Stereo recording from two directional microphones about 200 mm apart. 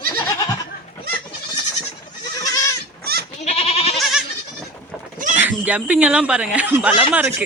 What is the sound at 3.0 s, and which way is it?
Goat, 50° right (ahead or behind).